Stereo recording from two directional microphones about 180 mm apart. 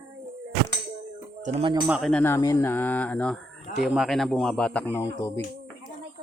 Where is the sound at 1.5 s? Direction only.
30° right (ahead or behind).